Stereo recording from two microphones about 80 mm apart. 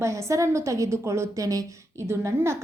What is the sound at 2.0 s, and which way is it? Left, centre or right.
Speech, right.